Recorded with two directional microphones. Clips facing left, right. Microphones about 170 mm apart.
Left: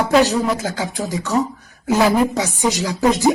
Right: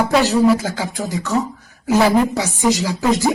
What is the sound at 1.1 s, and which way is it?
Speech, 15° left (ahead or behind).